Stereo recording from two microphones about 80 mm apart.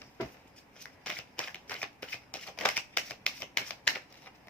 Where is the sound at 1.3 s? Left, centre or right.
Centre.